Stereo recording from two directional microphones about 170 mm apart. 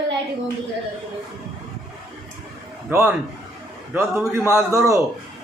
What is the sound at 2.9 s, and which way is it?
A man's voice, 10° right (ahead or behind).